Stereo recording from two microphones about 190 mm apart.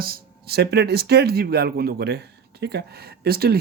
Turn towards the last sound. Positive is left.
turn(degrees=-55)  # may be behind; listen again after turning